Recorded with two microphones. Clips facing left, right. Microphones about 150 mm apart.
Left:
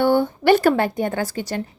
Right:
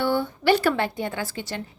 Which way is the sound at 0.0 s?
50° left (ahead or behind).